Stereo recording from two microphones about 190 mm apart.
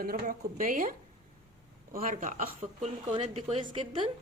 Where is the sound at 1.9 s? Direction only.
45° right (ahead or behind).